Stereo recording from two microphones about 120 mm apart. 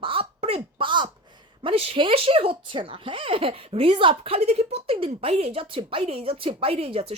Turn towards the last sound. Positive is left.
turn(degrees=-50)  # may be behind; listen again after turning